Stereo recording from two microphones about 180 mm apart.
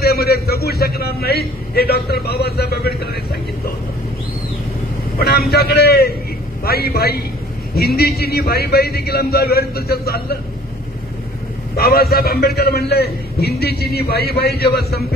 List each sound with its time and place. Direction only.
0.0 s a sound: 60° left (ahead or behind)
5.2 s vehicle: 60° left (ahead or behind)
6.6 s a man's voice: 60° left (ahead or behind)
11.7 s a man's voice: 60° left (ahead or behind)